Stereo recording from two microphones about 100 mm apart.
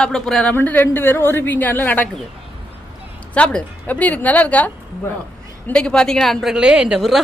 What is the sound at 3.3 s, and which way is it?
A woman's voice, 10° left (ahead or behind).